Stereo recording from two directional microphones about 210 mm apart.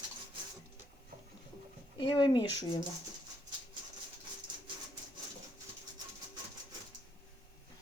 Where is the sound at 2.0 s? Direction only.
25° left (ahead or behind).